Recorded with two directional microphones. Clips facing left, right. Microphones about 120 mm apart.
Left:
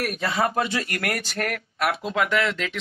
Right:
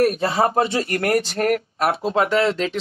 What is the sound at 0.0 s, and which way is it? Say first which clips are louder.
Speech: right 7 dB; 35° right (ahead or behind).